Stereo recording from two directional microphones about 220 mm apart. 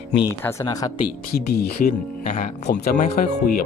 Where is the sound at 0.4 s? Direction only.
15° left (ahead or behind).